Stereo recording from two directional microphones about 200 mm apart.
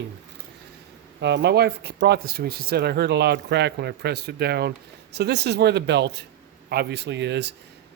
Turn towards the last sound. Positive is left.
turn(degrees=-60)  # may be behind; listen again after turning